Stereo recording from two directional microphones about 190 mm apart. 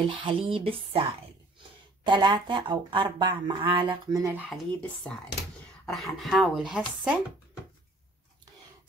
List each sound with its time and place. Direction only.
0.0 s speech: 25° right (ahead or behind)
2.0 s speech: 25° right (ahead or behind)
4.5 s speech: 5° left (ahead or behind)